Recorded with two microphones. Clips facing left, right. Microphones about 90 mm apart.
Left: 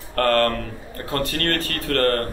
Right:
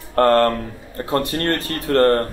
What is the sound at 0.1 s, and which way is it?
Speech, 25° right (ahead or behind).